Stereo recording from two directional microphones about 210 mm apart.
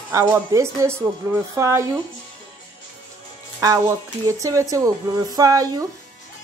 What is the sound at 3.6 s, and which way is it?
Speech, 15° right (ahead or behind).